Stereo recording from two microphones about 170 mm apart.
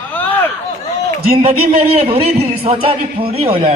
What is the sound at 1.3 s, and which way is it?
A man's voice, 35° right (ahead or behind).